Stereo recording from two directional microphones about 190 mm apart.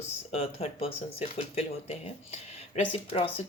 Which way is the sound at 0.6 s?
35° left (ahead or behind).